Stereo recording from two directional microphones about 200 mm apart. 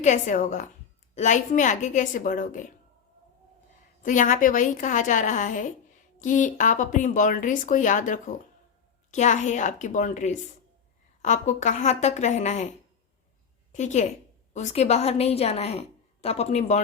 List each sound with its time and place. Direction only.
0.0 s a woman's voice: 35° left (ahead or behind)
4.0 s a woman's voice: 40° left (ahead or behind)
13.7 s a woman's voice: 35° left (ahead or behind)